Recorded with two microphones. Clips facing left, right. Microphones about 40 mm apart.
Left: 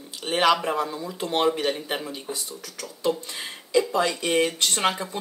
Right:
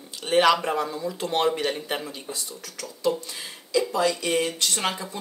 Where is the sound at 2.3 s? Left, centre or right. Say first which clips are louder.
Left 1 dB; centre.